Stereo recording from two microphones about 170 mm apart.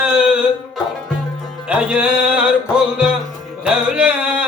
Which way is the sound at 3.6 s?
5° right (ahead or behind).